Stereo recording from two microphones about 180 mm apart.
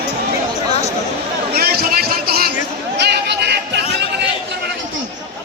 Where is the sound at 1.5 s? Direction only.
60° right (ahead or behind).